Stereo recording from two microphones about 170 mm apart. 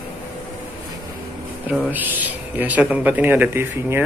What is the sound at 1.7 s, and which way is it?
Speech, 10° right (ahead or behind).